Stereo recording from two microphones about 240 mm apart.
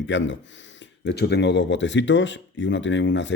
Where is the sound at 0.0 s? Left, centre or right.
Left.